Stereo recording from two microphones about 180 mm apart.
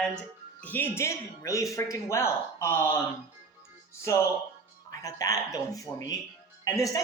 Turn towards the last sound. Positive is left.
turn(degrees=20)  # may be behind; listen again after turning